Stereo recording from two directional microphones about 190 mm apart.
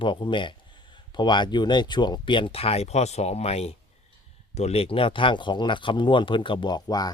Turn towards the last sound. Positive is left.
turn(degrees=20)  # may be behind; listen again after turning